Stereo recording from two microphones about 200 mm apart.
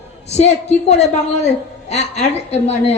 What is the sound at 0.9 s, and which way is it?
A woman's voice, 35° left (ahead or behind).